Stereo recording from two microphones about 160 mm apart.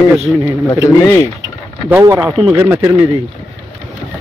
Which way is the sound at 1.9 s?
15° right (ahead or behind).